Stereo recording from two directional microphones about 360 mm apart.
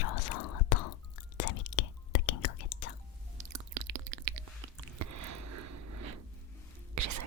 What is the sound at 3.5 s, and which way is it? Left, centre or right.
Chewing, right.